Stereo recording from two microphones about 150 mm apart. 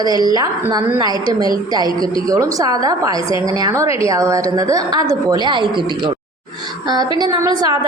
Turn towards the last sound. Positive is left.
turn(degrees=-25)  # may be behind; listen again after turning